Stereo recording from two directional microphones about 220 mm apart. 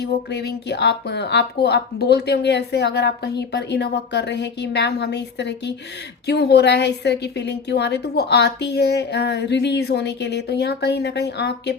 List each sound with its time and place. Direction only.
0.0 s speech: 50° left (ahead or behind)